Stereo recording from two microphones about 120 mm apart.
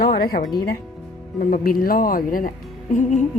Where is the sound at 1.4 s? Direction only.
90° left.